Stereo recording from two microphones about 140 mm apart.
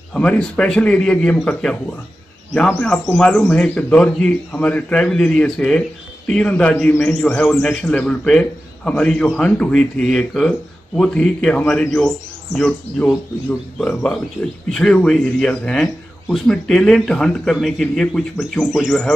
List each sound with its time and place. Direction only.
0.1 s a man's voice: 10° left (ahead or behind)
14.4 s speech: 20° left (ahead or behind)
14.7 s speech: 5° left (ahead or behind)